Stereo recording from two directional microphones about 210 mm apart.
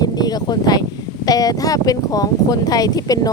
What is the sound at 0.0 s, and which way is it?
Speech, 20° left (ahead or behind).